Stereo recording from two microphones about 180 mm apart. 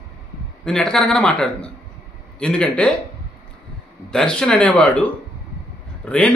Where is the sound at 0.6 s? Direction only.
5° left (ahead or behind).